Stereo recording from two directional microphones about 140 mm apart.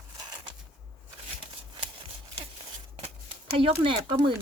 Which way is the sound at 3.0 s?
45° right (ahead or behind).